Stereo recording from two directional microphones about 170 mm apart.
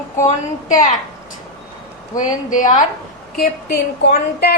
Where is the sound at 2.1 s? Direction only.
50° left (ahead or behind).